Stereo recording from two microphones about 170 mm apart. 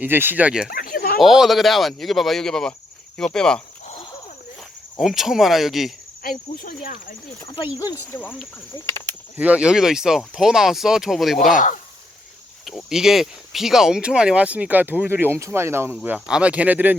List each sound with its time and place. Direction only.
0.0 s speech: 10° right (ahead or behind)
0.7 s a sound: 60° left (ahead or behind)
1.2 s speech: centre (ahead or behind)
4.9 s speech: centre (ahead or behind)
6.2 s speech: 60° left (ahead or behind)
7.4 s speech: 35° left (ahead or behind)
8.1 s speech: 10° left (ahead or behind)
9.4 s speech: 5° right (ahead or behind)
11.5 s speech: 50° left (ahead or behind)
12.6 s speech: centre (ahead or behind)